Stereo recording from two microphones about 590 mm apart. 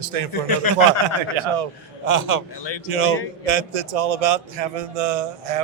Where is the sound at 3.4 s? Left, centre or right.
Right.